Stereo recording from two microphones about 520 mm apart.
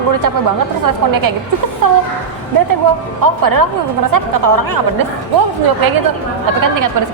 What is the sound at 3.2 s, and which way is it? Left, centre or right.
A woman's voice, right.